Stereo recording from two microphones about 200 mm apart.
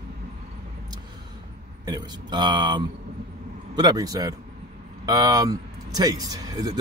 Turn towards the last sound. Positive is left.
turn(degrees=-20)  # may be behind; listen again after turning